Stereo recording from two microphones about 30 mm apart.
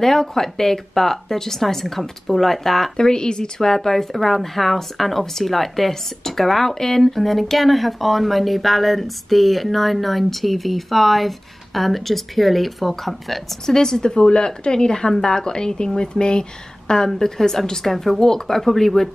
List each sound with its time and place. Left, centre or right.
0.0 s speech: centre
3.0 s speech: left
3.7 s speech: centre
13.7 s speech: centre
17.1 s speech: centre
18.6 s speech: centre